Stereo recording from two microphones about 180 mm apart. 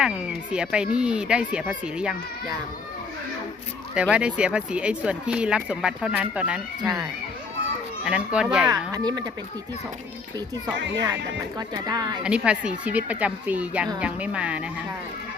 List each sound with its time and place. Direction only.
0.0 s speech: 5° right (ahead or behind)
4.1 s speech: 5° right (ahead or behind)
8.0 s speech: 5° right (ahead or behind)
8.9 s speech: 20° right (ahead or behind)
10.8 s speech: 80° right
11.0 s speech: 20° right (ahead or behind)
12.2 s speech: 5° right (ahead or behind)